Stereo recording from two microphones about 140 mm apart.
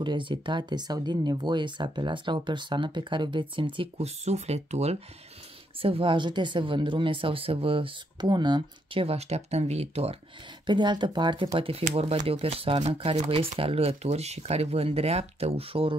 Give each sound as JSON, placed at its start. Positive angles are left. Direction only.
{"t": 0.0, "sound": "speech", "side_deg": -35}
{"t": 10.7, "sound": "speech", "side_deg": -30}
{"t": 11.8, "sound": "speech", "side_deg": -45}